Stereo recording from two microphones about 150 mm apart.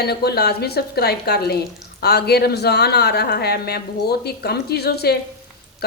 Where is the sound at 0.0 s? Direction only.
90° left.